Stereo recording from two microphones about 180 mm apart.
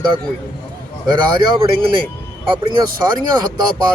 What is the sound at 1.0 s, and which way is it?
Speech, 25° right (ahead or behind).